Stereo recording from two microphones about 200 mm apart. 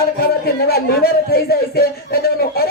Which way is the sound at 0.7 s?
50° left (ahead or behind).